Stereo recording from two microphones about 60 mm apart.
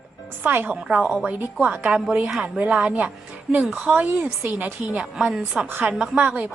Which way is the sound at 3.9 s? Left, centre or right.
Centre.